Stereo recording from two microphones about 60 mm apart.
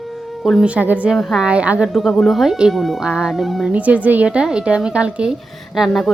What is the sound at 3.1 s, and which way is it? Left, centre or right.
Speech, centre.